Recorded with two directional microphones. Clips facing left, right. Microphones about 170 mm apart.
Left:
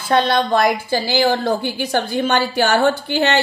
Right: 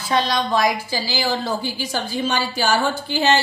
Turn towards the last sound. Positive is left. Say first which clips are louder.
# left 1 dB
turn(degrees=60)  # may be behind; listen again after turning